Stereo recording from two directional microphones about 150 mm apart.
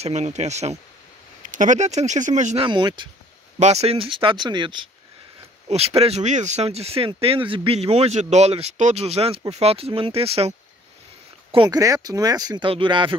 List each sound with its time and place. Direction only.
0.0 s speech: 50° right (ahead or behind)
2.6 s speech: 30° right (ahead or behind)
3.5 s speech: 45° right (ahead or behind); by 4.8 s 30° right (ahead or behind)
5.7 s speech: 40° right (ahead or behind)
11.5 s speech: 30° right (ahead or behind)